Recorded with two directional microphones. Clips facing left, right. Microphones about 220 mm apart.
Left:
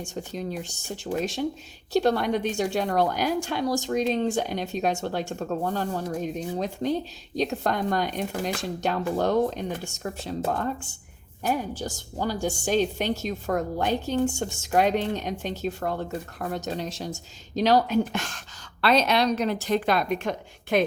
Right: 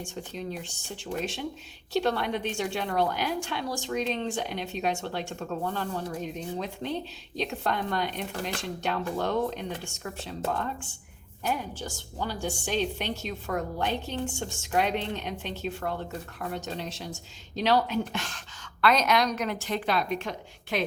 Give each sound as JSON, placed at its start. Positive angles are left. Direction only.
{"t": 0.0, "sound": "a woman's voice", "side_deg": 40}
{"t": 18.8, "sound": "a woman's voice", "side_deg": 30}